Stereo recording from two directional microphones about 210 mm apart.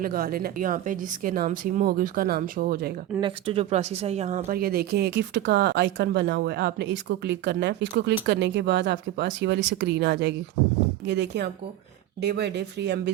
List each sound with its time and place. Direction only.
0.0 s speech: 45° right (ahead or behind)
3.2 s speech: 25° right (ahead or behind)
4.5 s speech: 45° right (ahead or behind)